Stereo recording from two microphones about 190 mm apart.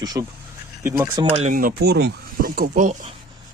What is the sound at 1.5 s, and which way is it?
Speech, 50° right (ahead or behind).